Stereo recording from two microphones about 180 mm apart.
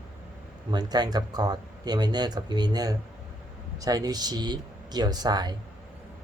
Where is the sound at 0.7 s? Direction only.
20° right (ahead or behind).